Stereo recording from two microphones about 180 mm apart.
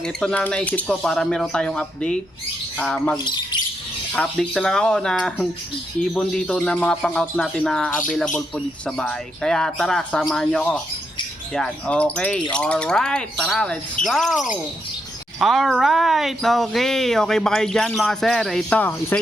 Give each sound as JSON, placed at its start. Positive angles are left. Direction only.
{"t": 0.0, "sound": "music", "side_deg": 5}
{"t": 2.7, "sound": "wind chime", "side_deg": 5}
{"t": 3.2, "sound": "speech", "side_deg": 25}
{"t": 4.1, "sound": "music", "side_deg": 5}
{"t": 11.5, "sound": "wind chime", "side_deg": 5}
{"t": 12.5, "sound": "music", "side_deg": 5}